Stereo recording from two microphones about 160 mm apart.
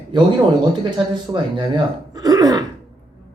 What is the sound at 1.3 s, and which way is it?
Speech, 25° right (ahead or behind).